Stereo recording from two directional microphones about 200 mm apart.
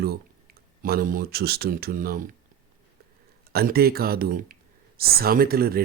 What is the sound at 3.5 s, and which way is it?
Speech, 50° right (ahead or behind).